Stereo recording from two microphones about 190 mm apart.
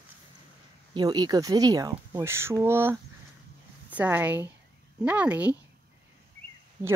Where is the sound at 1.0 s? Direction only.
20° right (ahead or behind).